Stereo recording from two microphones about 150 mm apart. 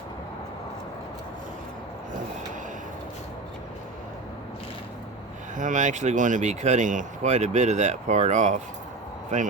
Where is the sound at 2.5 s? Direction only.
60° right (ahead or behind).